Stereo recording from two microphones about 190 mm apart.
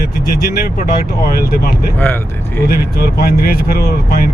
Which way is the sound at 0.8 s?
50° left (ahead or behind).